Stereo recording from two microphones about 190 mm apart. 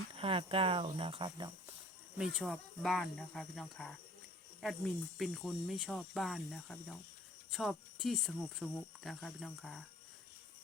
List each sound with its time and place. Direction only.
0.2 s speech: 30° right (ahead or behind)
2.1 s speech: centre (ahead or behind)